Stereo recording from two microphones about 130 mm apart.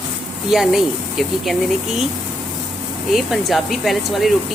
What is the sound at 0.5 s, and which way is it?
Speech, centre (ahead or behind).